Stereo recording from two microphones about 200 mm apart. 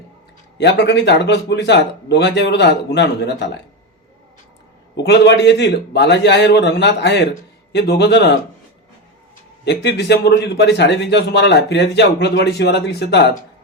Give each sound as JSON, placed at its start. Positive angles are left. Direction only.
{"t": 0.6, "sound": "a man's voice", "side_deg": 60}
{"t": 5.0, "sound": "a man's voice", "side_deg": 60}
{"t": 9.6, "sound": "a man's voice", "side_deg": 60}